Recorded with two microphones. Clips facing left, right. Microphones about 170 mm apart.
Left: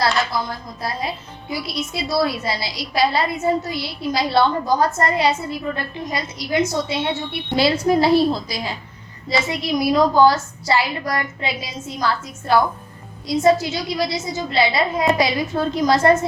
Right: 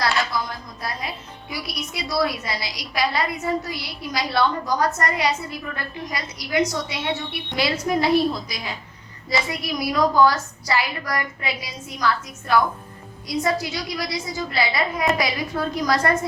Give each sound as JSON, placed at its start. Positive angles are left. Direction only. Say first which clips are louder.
{"t": 0.0, "sound": "a woman's voice", "louder": "left 3 dB", "side_deg": 30}